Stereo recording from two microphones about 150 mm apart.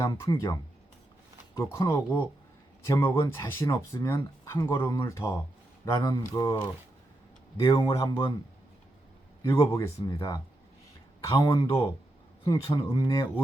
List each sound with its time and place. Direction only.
0.0 s speech: 20° left (ahead or behind)
7.6 s speech: 20° left (ahead or behind)
9.4 s speech: 25° left (ahead or behind)